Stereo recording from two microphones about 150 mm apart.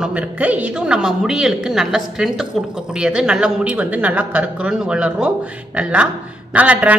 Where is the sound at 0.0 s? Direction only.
10° right (ahead or behind).